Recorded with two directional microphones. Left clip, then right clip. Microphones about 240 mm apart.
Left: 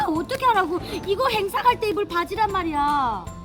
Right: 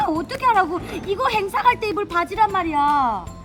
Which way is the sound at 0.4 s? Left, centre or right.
Centre.